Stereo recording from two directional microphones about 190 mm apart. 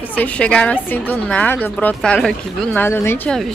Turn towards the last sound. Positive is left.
turn(degrees=10)  # may be behind; listen again after turning